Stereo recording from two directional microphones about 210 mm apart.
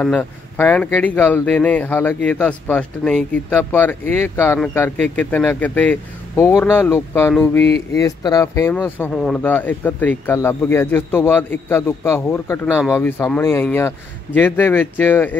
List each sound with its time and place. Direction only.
0.0 s speech: 5° left (ahead or behind)